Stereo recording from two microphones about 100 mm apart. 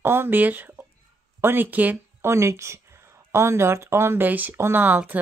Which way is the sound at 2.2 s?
25° right (ahead or behind).